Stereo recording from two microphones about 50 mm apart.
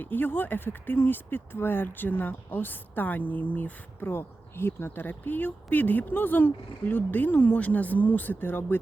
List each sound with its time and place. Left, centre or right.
0.0 s speech: left
4.1 s speech: left